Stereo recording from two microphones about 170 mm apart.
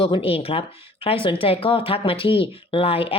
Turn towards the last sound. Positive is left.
turn(degrees=35)  # may be behind; listen again after turning